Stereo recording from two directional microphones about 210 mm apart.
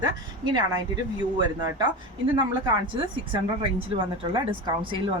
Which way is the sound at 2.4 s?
20° right (ahead or behind).